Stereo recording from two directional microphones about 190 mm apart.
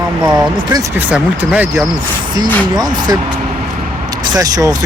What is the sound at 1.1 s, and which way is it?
Speech, 5° right (ahead or behind).